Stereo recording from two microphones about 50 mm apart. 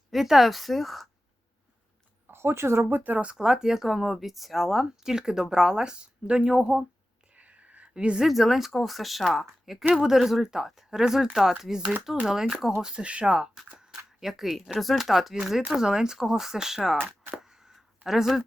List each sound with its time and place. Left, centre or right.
0.1 s speech: centre
2.2 s speech: right
3.0 s speech: right
3.3 s speech: centre
7.3 s a sound: right
8.3 s speech: centre
13.7 s a sound: centre
14.3 s speech: centre
17.4 s a sound: centre